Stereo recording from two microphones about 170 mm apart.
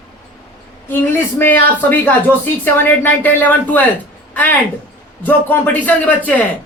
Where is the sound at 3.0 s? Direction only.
10° left (ahead or behind).